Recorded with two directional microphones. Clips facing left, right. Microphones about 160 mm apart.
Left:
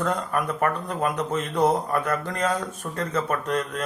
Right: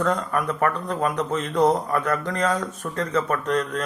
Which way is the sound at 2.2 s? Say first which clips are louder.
Right 2 dB; 10° left (ahead or behind).